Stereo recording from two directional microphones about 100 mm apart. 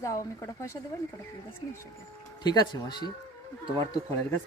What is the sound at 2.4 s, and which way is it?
Speech, 45° left (ahead or behind).